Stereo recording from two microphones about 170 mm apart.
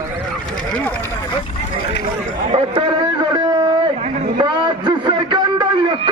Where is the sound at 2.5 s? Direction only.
30° right (ahead or behind).